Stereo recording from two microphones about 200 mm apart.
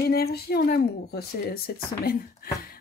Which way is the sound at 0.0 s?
50° left (ahead or behind).